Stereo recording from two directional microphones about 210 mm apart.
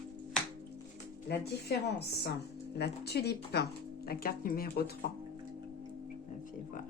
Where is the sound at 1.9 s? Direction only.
55° left (ahead or behind).